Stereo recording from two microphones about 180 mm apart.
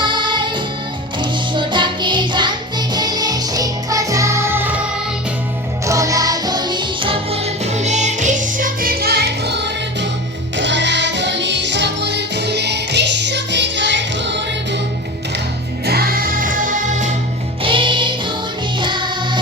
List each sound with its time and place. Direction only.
0.0 s music: 25° right (ahead or behind)
5.8 s music: 15° right (ahead or behind); by 9.6 s 65° right (ahead or behind)
10.6 s music: 80° right
15.9 s music: 55° right (ahead or behind)
17.6 s music: 30° right (ahead or behind)